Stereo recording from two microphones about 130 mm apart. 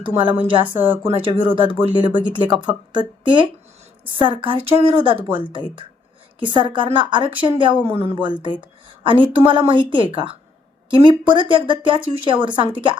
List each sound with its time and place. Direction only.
0.2 s a woman's voice: 40° right (ahead or behind)